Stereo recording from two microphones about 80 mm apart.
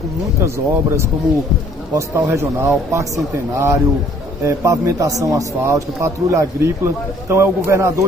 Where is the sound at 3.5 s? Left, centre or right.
Right.